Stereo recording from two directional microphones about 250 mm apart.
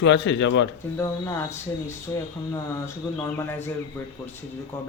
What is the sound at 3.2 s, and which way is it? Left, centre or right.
Speech, centre.